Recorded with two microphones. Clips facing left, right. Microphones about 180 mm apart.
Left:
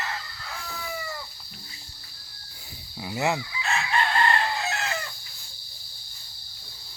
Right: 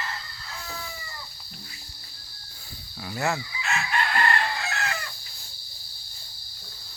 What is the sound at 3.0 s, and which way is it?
Fowl, 15° left (ahead or behind).